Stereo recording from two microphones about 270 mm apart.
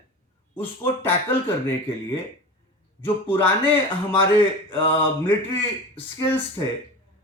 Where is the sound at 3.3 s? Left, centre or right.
Centre.